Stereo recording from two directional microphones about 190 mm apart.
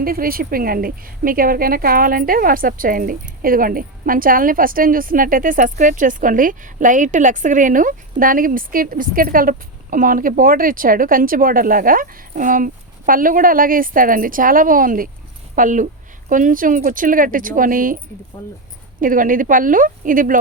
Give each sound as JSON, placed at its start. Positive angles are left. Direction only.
{"t": 0.0, "sound": "a woman's voice", "side_deg": -50}